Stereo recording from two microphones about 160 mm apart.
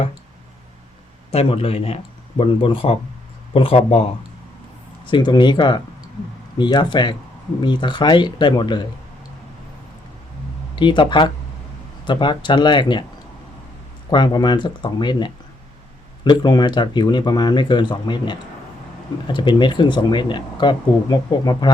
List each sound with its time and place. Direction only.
1.3 s a man's voice: 35° left (ahead or behind)
5.0 s speech: 30° left (ahead or behind)
10.8 s speech: 30° left (ahead or behind)
14.1 s speech: 30° left (ahead or behind)